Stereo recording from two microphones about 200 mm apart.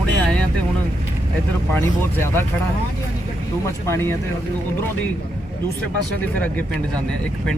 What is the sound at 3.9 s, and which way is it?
Speech, 10° left (ahead or behind).